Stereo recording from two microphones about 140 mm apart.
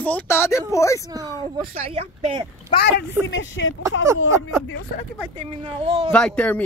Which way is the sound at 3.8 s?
20° right (ahead or behind).